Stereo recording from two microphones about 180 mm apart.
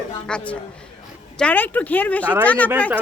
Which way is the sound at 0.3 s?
5° left (ahead or behind).